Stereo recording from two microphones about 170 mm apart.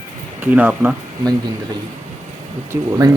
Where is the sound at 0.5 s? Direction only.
10° right (ahead or behind).